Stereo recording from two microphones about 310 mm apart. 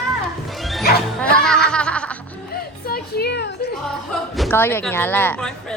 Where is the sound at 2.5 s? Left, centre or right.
Left.